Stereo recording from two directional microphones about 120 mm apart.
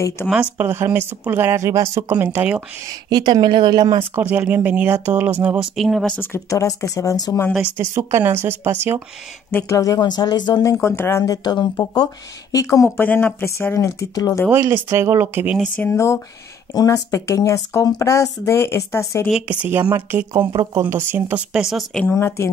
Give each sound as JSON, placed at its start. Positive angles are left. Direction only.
{"t": 0.3, "sound": "speech", "side_deg": -10}
{"t": 2.9, "sound": "a woman's voice", "side_deg": -35}
{"t": 4.1, "sound": "speech", "side_deg": -15}
{"t": 5.8, "sound": "a woman's voice", "side_deg": 0}
{"t": 6.1, "sound": "speech", "side_deg": 20}
{"t": 7.8, "sound": "speech", "side_deg": -20}
{"t": 9.5, "sound": "speech", "side_deg": 20}
{"t": 11.4, "sound": "speech", "side_deg": 40}
{"t": 14.5, "sound": "speech", "side_deg": -20}
{"t": 15.8, "sound": "speech", "side_deg": 25}
{"t": 19.4, "sound": "speech", "side_deg": -15}
{"t": 20.3, "sound": "speech", "side_deg": -25}
{"t": 21.5, "sound": "a woman's voice", "side_deg": -5}
{"t": 22.0, "sound": "speech", "side_deg": 20}